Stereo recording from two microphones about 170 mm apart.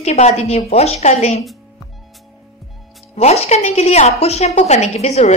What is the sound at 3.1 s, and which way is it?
Speech, 40° left (ahead or behind).